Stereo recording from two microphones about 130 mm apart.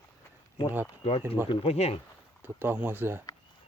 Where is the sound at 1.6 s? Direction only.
55° left (ahead or behind).